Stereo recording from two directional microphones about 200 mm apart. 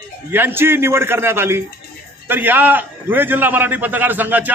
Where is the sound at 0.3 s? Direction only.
10° right (ahead or behind).